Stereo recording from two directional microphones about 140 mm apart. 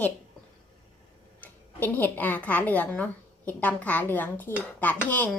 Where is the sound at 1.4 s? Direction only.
10° left (ahead or behind).